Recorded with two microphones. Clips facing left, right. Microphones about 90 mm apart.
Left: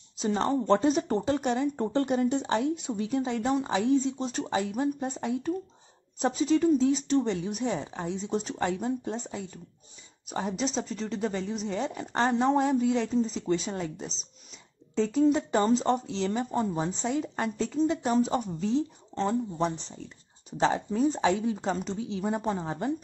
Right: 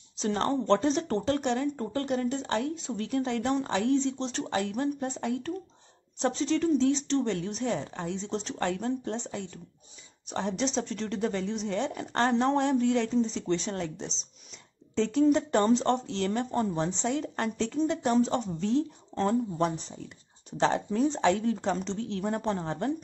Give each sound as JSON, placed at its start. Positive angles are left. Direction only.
{"t": 0.2, "sound": "a woman's voice", "side_deg": 5}
{"t": 1.8, "sound": "speech", "side_deg": 20}
{"t": 2.0, "sound": "a woman's voice", "side_deg": 10}